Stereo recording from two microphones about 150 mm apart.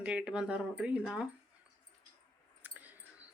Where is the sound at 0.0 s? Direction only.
5° right (ahead or behind).